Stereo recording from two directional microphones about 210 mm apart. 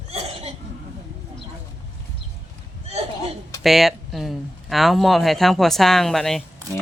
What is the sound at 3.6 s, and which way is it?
Speech, centre (ahead or behind).